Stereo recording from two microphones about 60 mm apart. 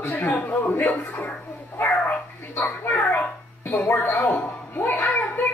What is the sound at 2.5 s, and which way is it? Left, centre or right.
Speech, left.